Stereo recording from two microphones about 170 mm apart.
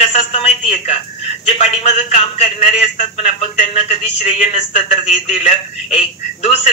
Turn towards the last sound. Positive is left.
turn(degrees=40)  # may be behind; listen again after turning